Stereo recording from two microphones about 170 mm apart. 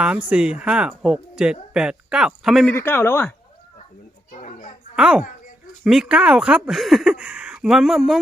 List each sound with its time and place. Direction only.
0.3 s speech: 5° right (ahead or behind)
2.7 s speech: 15° left (ahead or behind)
4.3 s children playing: 50° left (ahead or behind)
4.9 s a woman's voice: 5° right (ahead or behind)